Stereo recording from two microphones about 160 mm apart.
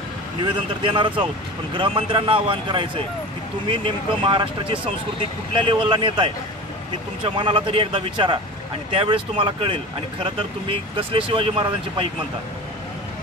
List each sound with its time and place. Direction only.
0.8 s a man's voice: 30° right (ahead or behind)